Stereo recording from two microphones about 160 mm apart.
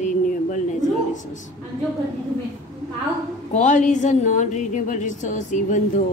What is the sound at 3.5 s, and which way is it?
A woman's voice, 50° left (ahead or behind).